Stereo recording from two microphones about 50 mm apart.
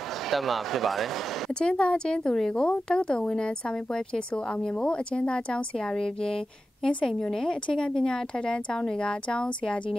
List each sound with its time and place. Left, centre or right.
0.3 s speech: centre
1.6 s a woman's voice: centre